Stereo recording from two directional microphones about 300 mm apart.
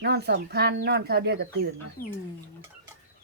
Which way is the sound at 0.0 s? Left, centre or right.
Right.